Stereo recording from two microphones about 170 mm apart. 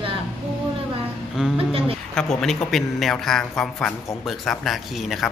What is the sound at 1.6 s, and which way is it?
Speech, 35° right (ahead or behind).